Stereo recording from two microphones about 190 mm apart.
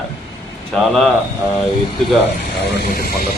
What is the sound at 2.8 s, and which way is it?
Speech, 50° left (ahead or behind).